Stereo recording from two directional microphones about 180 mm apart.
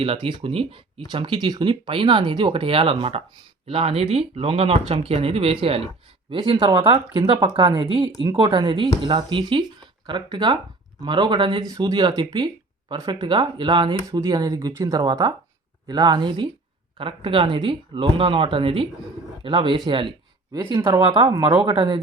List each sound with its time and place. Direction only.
0.0 s speech: 30° right (ahead or behind)